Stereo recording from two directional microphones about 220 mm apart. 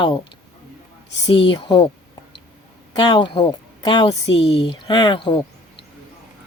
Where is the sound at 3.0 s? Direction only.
20° left (ahead or behind).